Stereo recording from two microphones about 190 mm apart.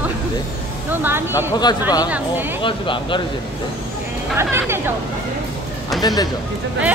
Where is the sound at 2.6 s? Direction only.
25° left (ahead or behind).